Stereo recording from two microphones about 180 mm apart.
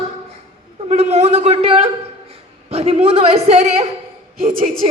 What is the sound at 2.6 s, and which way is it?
A man's voice, 35° right (ahead or behind).